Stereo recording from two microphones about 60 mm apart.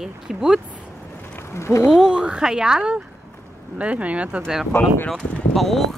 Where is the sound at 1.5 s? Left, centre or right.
Left.